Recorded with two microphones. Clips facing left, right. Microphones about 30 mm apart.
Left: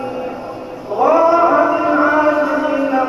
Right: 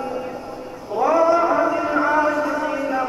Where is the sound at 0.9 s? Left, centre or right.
Left.